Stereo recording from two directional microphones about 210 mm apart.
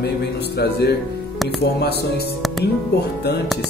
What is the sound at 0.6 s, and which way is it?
Speech, 50° left (ahead or behind).